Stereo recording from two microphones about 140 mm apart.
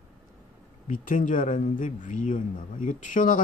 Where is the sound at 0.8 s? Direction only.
70° left (ahead or behind).